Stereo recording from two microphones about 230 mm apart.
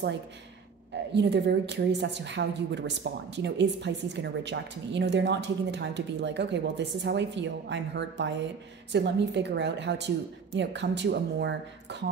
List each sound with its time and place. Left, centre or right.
1.1 s a woman's voice: right